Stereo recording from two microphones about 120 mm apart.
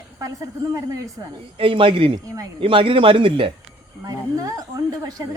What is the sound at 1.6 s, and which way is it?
A man's voice, 45° right (ahead or behind).